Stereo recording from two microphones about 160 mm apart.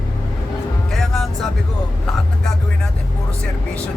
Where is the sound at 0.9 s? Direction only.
Centre (ahead or behind).